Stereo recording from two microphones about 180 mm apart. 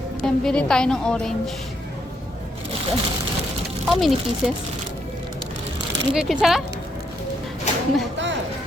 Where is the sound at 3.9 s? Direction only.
Centre (ahead or behind).